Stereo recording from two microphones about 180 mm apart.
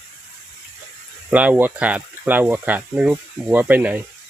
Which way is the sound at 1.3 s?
10° right (ahead or behind).